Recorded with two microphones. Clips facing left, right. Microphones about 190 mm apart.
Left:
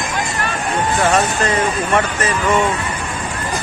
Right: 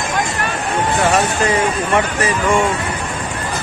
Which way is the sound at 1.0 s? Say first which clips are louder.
Even; 10° right (ahead or behind).